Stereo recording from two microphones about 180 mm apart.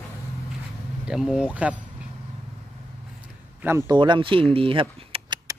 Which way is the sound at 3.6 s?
15° right (ahead or behind).